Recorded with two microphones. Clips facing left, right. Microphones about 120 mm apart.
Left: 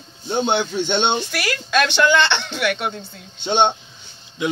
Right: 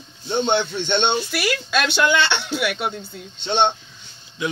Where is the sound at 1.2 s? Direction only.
5° right (ahead or behind).